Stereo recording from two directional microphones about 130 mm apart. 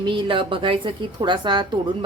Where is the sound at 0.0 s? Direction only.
40° right (ahead or behind).